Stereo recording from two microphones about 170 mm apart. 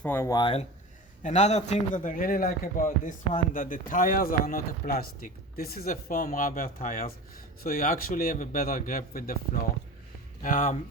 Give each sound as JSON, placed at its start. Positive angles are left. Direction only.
{"t": 0.0, "sound": "speech", "side_deg": 15}
{"t": 1.2, "sound": "a man's voice", "side_deg": 40}